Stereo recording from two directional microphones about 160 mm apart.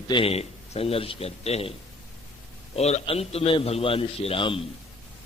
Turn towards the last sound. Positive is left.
turn(degrees=35)  # may be behind; listen again after turning